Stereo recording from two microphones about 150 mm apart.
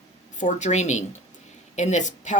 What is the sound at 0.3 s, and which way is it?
Speech, 55° left (ahead or behind).